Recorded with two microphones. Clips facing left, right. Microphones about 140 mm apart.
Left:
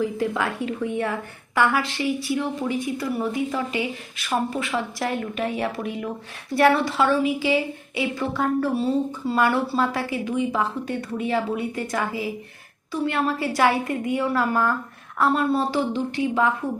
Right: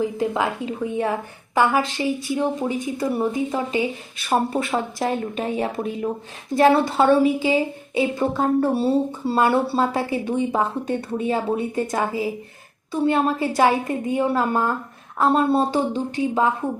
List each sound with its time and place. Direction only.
0.0 s a woman's voice: 20° right (ahead or behind)
4.3 s a woman's voice: 35° right (ahead or behind)